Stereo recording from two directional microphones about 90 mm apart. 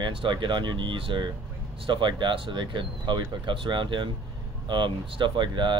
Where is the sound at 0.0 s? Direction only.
65° right (ahead or behind).